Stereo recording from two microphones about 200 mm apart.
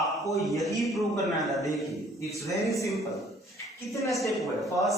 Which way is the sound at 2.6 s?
15° left (ahead or behind).